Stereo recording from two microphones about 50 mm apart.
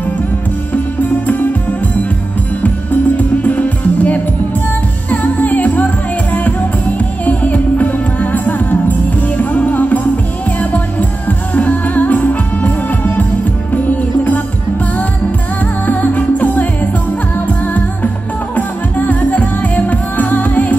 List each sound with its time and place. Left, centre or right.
1.2 s music: left
3.2 s music: left
7.0 s music: left
15.9 s music: left